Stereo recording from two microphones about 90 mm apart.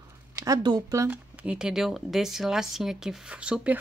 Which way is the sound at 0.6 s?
50° right (ahead or behind).